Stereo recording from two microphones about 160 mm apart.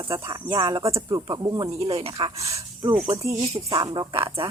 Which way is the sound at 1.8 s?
35° right (ahead or behind).